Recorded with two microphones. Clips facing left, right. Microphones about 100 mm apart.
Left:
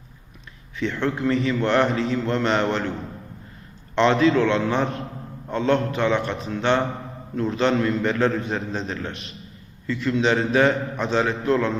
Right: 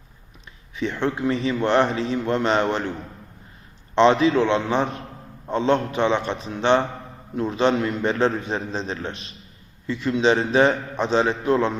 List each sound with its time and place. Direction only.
0.8 s a man's voice: 20° right (ahead or behind)
3.9 s a man's voice: 20° right (ahead or behind)